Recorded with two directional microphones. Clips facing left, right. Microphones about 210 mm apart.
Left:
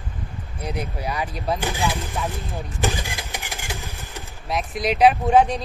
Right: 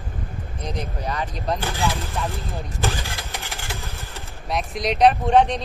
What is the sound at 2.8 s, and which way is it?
Vehicle, 15° left (ahead or behind).